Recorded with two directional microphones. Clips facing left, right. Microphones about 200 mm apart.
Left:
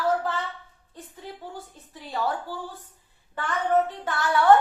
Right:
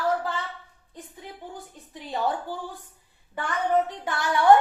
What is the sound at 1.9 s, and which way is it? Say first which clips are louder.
Speech: right 1 dB; 20° right (ahead or behind).